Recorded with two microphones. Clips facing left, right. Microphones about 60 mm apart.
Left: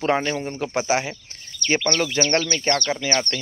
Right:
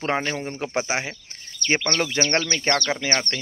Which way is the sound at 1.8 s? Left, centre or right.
Right.